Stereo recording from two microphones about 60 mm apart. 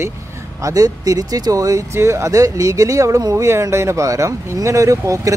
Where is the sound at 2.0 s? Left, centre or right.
Right.